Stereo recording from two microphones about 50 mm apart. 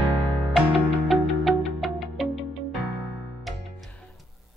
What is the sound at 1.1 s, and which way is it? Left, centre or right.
Music, centre.